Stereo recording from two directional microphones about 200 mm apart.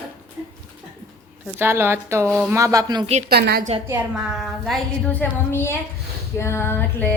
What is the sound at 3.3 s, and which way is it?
Speech, 50° right (ahead or behind).